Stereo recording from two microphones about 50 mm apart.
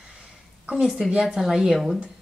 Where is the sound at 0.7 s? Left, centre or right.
Centre.